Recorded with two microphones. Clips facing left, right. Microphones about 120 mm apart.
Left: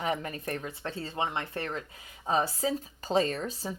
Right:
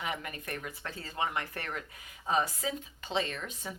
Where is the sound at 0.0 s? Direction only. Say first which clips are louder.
Left 6 dB; 35° left (ahead or behind).